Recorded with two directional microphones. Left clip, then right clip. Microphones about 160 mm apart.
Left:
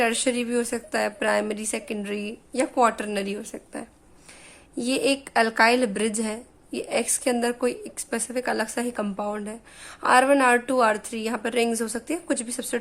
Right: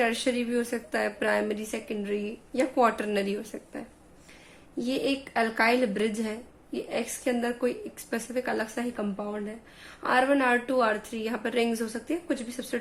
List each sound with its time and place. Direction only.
0.0 s a woman's voice: 35° left (ahead or behind)